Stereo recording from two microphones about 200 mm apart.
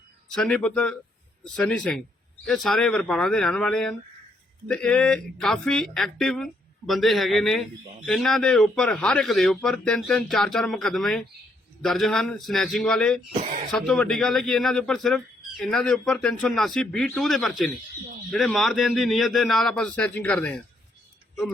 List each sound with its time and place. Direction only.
0.3 s speech: 5° left (ahead or behind)
13.3 s speech: 40° right (ahead or behind)
13.7 s speech: centre (ahead or behind)